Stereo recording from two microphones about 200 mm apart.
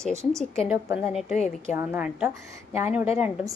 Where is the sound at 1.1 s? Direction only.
Centre (ahead or behind).